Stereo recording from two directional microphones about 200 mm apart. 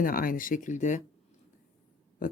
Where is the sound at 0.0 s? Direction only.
45° left (ahead or behind).